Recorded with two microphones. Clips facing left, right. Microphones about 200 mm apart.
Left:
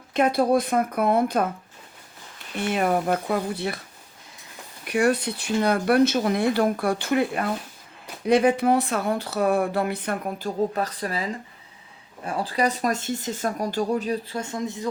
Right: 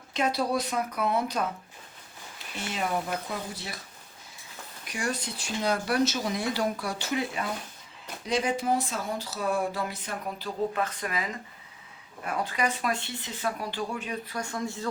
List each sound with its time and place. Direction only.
0.1 s speech: 55° left (ahead or behind)
2.6 s speech: 60° left (ahead or behind)
4.9 s speech: 60° left (ahead or behind); by 14.8 s 20° left (ahead or behind)